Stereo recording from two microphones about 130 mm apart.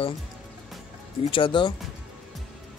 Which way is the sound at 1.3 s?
40° left (ahead or behind).